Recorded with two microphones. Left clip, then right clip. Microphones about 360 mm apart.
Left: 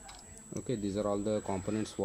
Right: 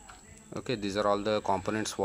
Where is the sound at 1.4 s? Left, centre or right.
Right.